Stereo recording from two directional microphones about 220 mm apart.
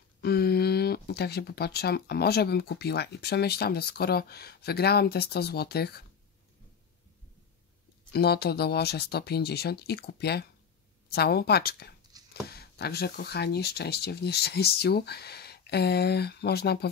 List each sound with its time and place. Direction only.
0.2 s speech: 45° left (ahead or behind)
8.1 s speech: 45° left (ahead or behind)
12.1 s dog: 15° right (ahead or behind)
12.4 s speech: 45° left (ahead or behind)